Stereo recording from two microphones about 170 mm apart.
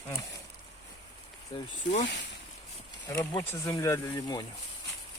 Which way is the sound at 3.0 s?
20° left (ahead or behind).